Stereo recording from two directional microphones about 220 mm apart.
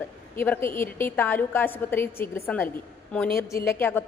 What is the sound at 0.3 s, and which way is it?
A woman's voice, 10° left (ahead or behind).